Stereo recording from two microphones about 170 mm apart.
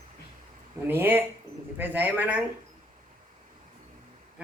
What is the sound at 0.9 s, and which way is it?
A man's voice, 10° right (ahead or behind).